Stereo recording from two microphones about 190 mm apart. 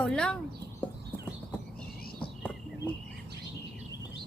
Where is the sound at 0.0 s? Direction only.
5° left (ahead or behind).